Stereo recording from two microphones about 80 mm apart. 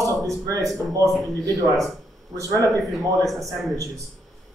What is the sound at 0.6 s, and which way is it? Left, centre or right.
Speech, centre.